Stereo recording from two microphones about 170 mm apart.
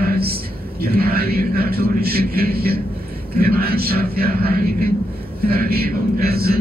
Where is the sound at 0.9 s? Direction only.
65° right (ahead or behind).